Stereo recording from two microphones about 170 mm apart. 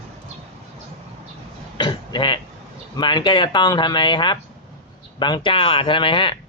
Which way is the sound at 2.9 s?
25° left (ahead or behind).